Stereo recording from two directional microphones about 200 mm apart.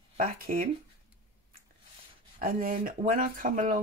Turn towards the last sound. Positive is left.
turn(degrees=-40)  # may be behind; listen again after turning